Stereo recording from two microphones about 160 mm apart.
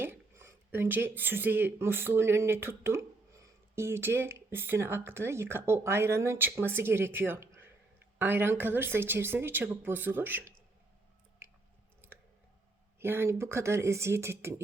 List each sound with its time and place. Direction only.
0.0 s speech: 15° right (ahead or behind)
13.0 s speech: 15° right (ahead or behind)